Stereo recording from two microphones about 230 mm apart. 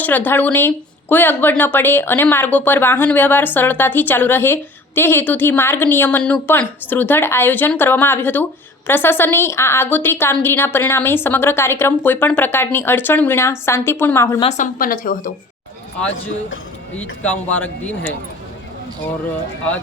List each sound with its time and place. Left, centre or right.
0.0 s speech: centre
14.4 s a woman's voice: left
17.0 s speech: centre